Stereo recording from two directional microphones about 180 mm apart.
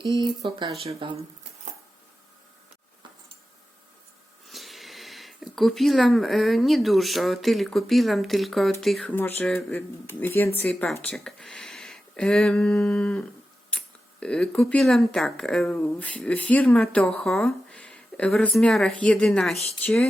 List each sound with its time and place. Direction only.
0.2 s speech: 25° right (ahead or behind)
4.4 s speech: centre (ahead or behind)
19.5 s speech: 35° left (ahead or behind)
19.8 s speech: 10° left (ahead or behind)